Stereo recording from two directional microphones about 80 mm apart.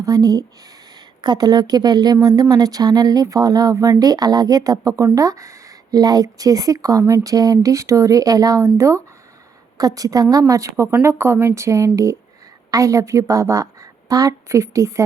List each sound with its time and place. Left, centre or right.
0.0 s speech: right
1.2 s a woman's voice: right